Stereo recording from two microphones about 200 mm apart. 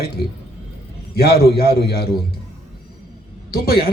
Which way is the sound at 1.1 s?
50° left (ahead or behind).